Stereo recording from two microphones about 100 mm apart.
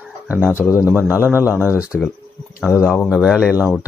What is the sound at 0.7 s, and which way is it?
Speech, 15° right (ahead or behind).